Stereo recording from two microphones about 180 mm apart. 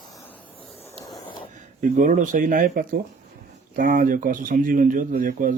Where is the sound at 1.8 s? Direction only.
45° right (ahead or behind).